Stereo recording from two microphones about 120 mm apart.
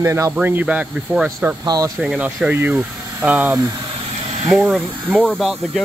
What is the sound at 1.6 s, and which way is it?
Speech, 35° right (ahead or behind).